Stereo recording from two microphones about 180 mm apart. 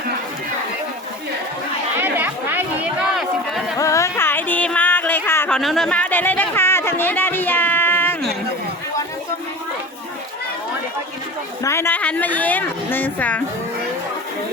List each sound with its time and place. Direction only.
2.0 s chatter: 10° right (ahead or behind)
3.8 s a sound: 15° left (ahead or behind)
5.5 s speech: centre (ahead or behind)
11.6 s a woman's voice: 15° left (ahead or behind)